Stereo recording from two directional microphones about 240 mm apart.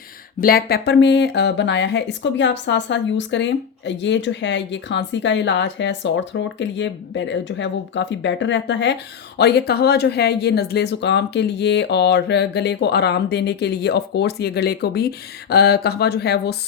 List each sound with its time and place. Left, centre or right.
0.3 s speech: left